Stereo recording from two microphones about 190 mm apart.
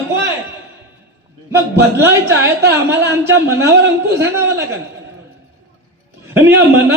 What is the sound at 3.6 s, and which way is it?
Speech, 60° right (ahead or behind).